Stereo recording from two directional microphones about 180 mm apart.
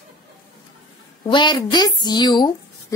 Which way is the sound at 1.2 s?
25° left (ahead or behind).